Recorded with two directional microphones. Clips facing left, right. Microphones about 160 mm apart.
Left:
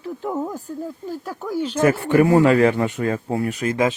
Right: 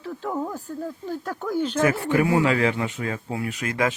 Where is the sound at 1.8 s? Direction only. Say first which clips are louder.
Left 5 dB; 55° left (ahead or behind).